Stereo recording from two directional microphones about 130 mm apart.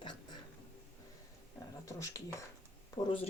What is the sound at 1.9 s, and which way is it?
Speech, 25° left (ahead or behind).